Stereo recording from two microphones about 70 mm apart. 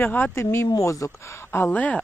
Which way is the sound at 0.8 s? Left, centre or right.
Left.